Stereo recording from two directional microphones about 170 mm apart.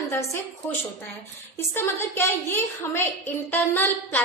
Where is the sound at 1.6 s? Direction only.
15° left (ahead or behind).